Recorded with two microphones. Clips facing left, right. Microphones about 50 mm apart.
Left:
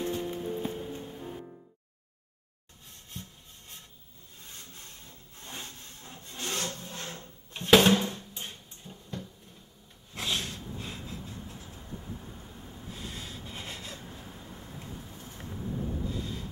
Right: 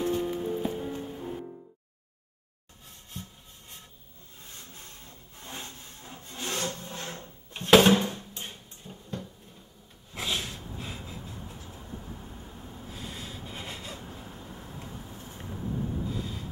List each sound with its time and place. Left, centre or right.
0.0 s music: centre
3.1 s wood: centre
10.1 s snort: centre
11.7 s vehicle: centre
12.9 s rub: centre
14.2 s vehicle: right
16.1 s a sound: centre